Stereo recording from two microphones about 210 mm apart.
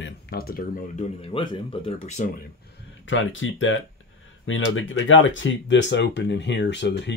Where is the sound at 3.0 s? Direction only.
65° left (ahead or behind).